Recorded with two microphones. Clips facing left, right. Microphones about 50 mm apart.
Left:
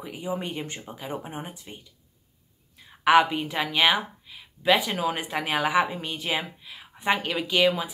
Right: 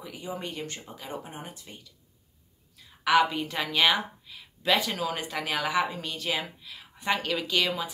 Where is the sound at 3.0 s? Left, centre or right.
Left.